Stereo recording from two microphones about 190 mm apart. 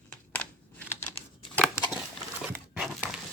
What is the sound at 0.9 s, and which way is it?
Crumpling, 10° left (ahead or behind).